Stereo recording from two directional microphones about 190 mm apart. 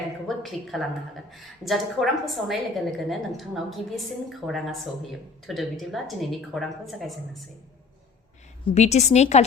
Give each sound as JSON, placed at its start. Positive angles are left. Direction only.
{"t": 0.3, "sound": "a woman's voice", "side_deg": 0}
{"t": 8.6, "sound": "a woman's voice", "side_deg": 35}